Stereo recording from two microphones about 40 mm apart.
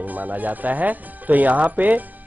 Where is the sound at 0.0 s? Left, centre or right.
Right.